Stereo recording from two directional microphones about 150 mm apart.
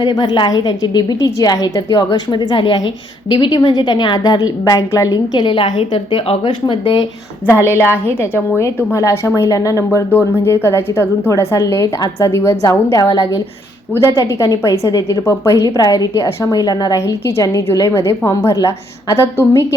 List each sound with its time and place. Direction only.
0.0 s a woman's voice: 30° left (ahead or behind)
7.5 s a woman's voice: 15° right (ahead or behind)
7.9 s a woman's voice: 15° left (ahead or behind)